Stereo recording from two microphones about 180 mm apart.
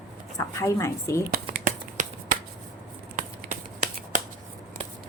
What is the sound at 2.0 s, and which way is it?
Finger snapping, 45° right (ahead or behind).